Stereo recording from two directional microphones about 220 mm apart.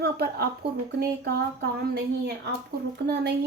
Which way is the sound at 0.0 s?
45° right (ahead or behind).